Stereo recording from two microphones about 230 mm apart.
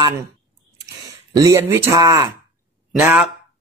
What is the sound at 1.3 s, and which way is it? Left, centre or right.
Speech, centre.